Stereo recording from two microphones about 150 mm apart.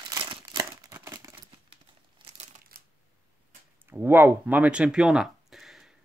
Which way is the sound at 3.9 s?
15° right (ahead or behind).